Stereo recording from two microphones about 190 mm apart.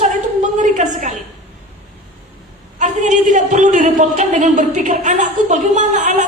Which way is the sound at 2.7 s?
40° right (ahead or behind).